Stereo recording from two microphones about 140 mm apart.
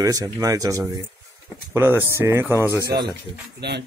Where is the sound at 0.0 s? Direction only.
25° right (ahead or behind).